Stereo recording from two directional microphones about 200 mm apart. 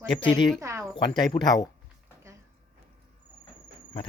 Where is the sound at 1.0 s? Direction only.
20° left (ahead or behind).